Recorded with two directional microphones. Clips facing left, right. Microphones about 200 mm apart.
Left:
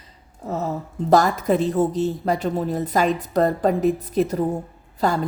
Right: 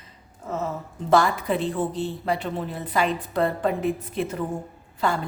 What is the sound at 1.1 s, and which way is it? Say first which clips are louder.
A woman's voice: left 3 dB; 40° left (ahead or behind).